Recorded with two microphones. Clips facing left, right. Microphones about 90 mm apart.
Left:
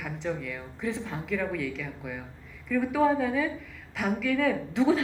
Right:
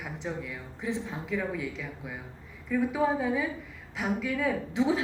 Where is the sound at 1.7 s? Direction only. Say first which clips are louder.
Left 2 dB; 5° right (ahead or behind).